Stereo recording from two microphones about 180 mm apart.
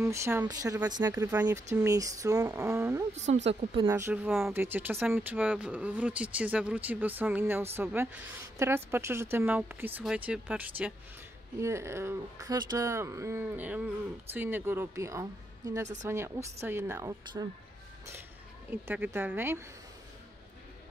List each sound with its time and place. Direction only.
0.0 s speech: 15° right (ahead or behind)
1.9 s a sound: 20° right (ahead or behind)
3.3 s speech: 35° right (ahead or behind)
3.8 s speech: 15° right (ahead or behind)
18.7 s speech: 10° right (ahead or behind)